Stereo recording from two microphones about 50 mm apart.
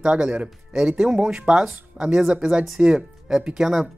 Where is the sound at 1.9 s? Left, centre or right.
Centre.